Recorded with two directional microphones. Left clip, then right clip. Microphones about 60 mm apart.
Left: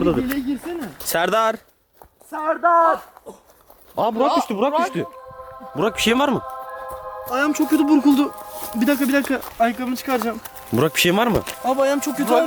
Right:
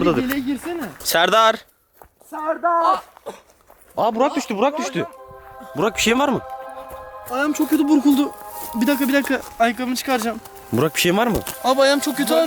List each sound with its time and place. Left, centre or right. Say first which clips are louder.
0.2 s speech: right 1 dB; right
0.9 s speech: right 4 dB; centre
2.8 s speech: even; right
3.9 s speech: left 1 dB; centre
10.7 s speech: left 1 dB; centre